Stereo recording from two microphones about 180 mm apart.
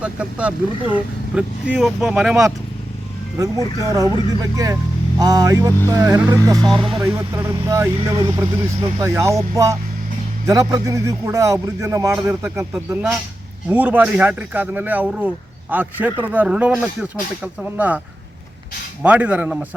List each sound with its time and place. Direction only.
0.0 s speech: 5° right (ahead or behind)
3.8 s speech: 20° right (ahead or behind)
19.0 s speech: 10° right (ahead or behind)